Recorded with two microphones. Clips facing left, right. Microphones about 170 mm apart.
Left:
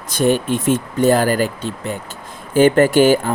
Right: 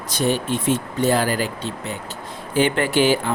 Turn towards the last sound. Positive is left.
turn(degrees=45)  # may be behind; listen again after turning